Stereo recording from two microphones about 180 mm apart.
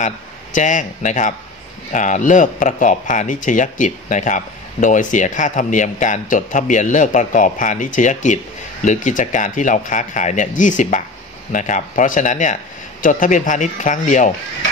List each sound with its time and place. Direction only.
0.0 s speech: 45° left (ahead or behind)